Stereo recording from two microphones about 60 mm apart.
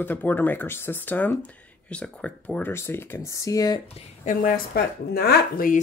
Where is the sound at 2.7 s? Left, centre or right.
Left.